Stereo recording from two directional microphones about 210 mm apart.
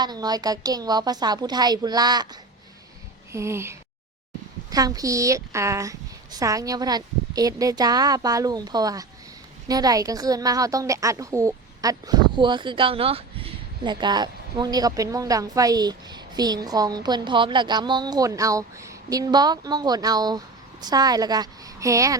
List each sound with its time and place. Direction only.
0.0 s a woman's voice: 20° right (ahead or behind)